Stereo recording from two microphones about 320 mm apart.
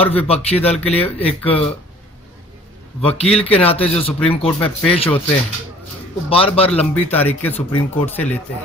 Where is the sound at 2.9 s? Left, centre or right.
Centre.